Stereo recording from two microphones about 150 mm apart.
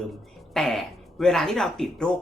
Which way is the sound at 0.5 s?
Centre (ahead or behind).